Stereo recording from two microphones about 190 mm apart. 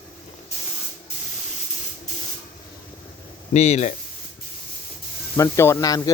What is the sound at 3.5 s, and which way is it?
Speech, 35° left (ahead or behind).